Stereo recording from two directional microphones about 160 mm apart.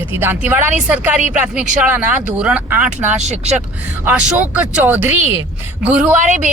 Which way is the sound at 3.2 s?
45° right (ahead or behind).